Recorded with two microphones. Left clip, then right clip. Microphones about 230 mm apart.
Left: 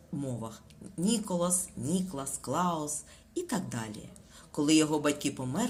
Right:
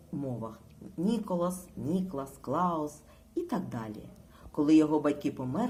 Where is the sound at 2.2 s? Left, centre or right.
Left.